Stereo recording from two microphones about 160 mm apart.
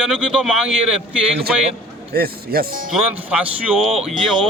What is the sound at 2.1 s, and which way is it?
Speech, 75° right (ahead or behind).